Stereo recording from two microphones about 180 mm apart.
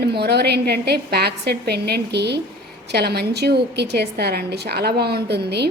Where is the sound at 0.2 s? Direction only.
65° right (ahead or behind).